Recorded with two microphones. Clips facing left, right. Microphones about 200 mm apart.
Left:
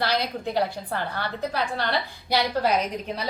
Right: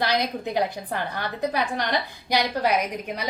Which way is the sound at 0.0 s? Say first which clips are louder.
Right 1 dB; 15° right (ahead or behind).